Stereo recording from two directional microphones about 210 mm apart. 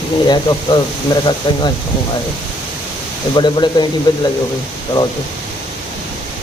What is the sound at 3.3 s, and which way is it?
Speech, 20° left (ahead or behind).